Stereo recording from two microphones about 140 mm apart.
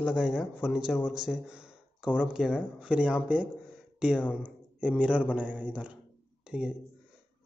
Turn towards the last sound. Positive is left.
turn(degrees=-5)  # may be behind; listen again after turning